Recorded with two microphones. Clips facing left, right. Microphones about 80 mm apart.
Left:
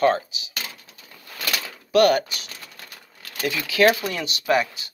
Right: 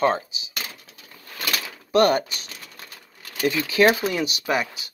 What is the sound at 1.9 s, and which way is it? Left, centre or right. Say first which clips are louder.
Speech: left 1 dB; right.